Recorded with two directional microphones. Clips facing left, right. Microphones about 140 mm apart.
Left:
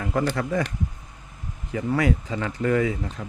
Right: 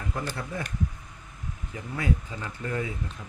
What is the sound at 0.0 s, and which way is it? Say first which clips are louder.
Speech: left 9 dB; 85° left.